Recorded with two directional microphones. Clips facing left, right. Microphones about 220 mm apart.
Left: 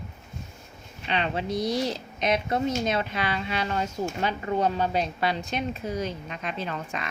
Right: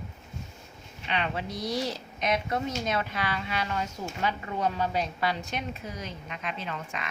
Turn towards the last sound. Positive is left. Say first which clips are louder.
# left 4 dB
turn(degrees=40)  # may be behind; listen again after turning